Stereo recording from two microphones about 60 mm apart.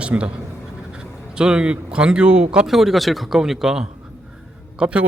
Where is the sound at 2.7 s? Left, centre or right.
Centre.